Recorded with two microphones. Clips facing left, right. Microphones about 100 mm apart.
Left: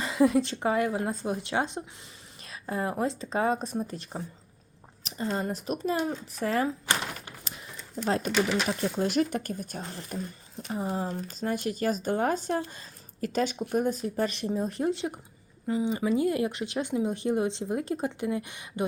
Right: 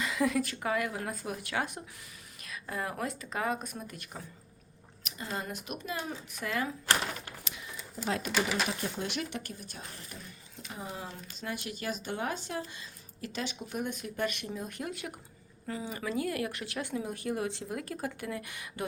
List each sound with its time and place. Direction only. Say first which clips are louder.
0.0 s speech: left 6 dB; 30° left (ahead or behind)
7.5 s a sound: left 2 dB; 35° left (ahead or behind)
8.0 s speech: left 6 dB; 35° left (ahead or behind)
8.3 s speech: left 3 dB; 5° right (ahead or behind)
9.0 s speech: left 9 dB; 40° left (ahead or behind); by 18.9 s 20° left (ahead or behind)